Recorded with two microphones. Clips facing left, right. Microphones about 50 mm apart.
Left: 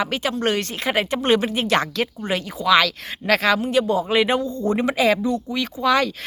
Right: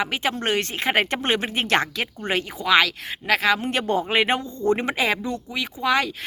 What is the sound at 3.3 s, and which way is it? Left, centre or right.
Speech, centre.